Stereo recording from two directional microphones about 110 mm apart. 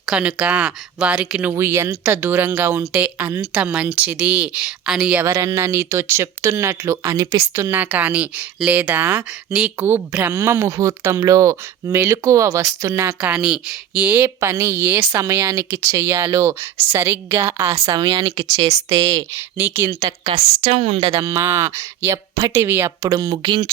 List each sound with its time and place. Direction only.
0.0 s speech: 10° right (ahead or behind)
1.5 s speech: 25° right (ahead or behind)
5.2 s speech: 30° right (ahead or behind)
13.3 s a woman's voice: 10° right (ahead or behind); by 19.2 s 35° right (ahead or behind)
19.5 s speech: 20° right (ahead or behind)
19.9 s a woman's voice: 40° right (ahead or behind)
20.6 s speech: 65° right (ahead or behind)
21.1 s speech: 30° right (ahead or behind)
22.6 s speech: 20° right (ahead or behind)
23.1 s a woman's voice: 40° right (ahead or behind)